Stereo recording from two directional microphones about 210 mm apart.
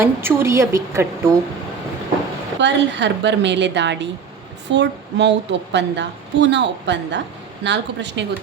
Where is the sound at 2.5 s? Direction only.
60° right (ahead or behind).